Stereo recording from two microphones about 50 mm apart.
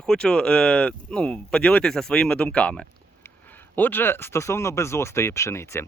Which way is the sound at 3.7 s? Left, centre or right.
Left.